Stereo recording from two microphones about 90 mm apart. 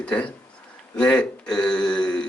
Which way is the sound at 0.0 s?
10° left (ahead or behind).